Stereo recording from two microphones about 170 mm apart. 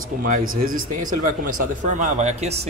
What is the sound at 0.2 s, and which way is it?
Speech, 55° right (ahead or behind).